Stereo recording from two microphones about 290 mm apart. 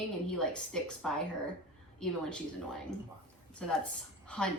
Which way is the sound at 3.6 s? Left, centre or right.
Centre.